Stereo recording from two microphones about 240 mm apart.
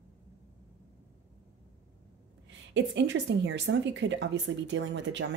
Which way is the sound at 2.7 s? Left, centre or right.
Right.